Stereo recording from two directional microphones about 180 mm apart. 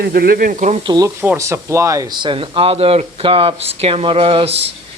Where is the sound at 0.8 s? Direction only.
20° right (ahead or behind).